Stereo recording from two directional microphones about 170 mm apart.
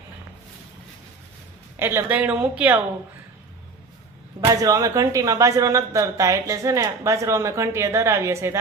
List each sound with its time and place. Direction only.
1.7 s a woman's voice: 15° right (ahead or behind)
4.4 s speech: 20° right (ahead or behind)